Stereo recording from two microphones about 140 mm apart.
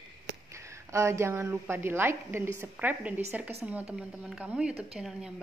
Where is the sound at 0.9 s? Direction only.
20° right (ahead or behind); by 5.3 s 5° right (ahead or behind).